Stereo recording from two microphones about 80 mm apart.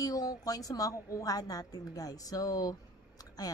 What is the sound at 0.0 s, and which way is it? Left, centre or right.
Speech, left.